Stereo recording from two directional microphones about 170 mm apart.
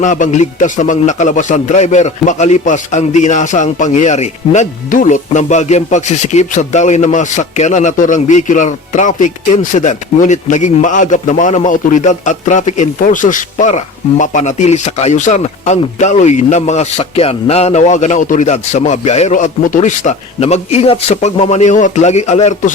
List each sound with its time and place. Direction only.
0.0 s a man's voice: 45° left (ahead or behind)